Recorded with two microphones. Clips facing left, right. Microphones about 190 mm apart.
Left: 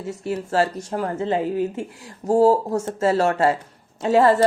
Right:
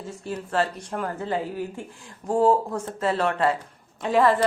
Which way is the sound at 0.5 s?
45° left (ahead or behind).